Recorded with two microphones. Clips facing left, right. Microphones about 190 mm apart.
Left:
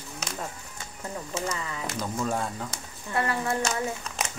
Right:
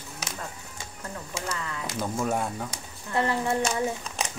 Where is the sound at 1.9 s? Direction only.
10° right (ahead or behind).